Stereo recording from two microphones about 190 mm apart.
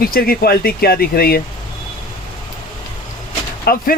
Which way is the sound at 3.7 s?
50° left (ahead or behind).